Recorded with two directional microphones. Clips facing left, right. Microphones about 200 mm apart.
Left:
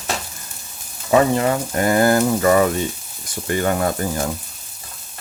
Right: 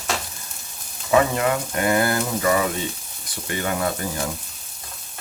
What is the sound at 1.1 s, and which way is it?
Speech, 30° left (ahead or behind).